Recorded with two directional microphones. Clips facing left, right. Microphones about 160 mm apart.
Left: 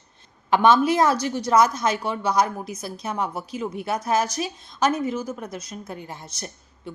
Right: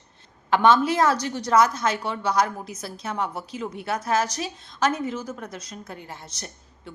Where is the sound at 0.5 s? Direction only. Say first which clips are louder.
Left 1 dB; 15° left (ahead or behind).